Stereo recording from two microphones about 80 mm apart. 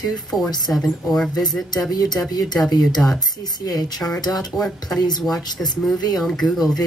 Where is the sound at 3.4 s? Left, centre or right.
Left.